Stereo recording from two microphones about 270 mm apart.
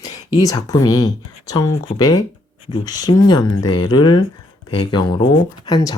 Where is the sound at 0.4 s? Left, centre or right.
Centre.